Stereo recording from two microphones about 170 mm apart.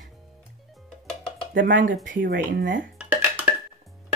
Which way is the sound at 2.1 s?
90° right.